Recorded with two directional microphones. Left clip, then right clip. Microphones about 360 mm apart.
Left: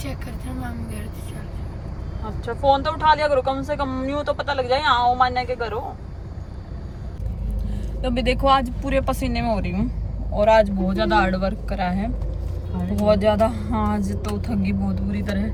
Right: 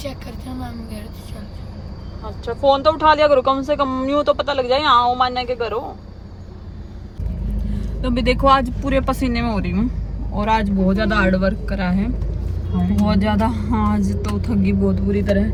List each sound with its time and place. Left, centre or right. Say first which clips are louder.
0.0 s speech: right 3 dB; centre
2.5 s speech: right 4 dB; centre
8.0 s speech: right 3 dB; centre